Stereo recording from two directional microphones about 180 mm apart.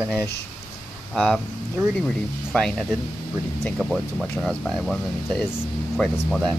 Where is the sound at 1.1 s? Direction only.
5° left (ahead or behind).